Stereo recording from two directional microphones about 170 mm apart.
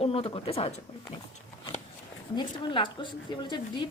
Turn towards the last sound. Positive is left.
turn(degrees=25)  # may be behind; listen again after turning